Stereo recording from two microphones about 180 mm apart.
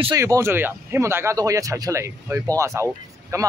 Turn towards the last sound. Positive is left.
turn(degrees=-15)  # may be behind; listen again after turning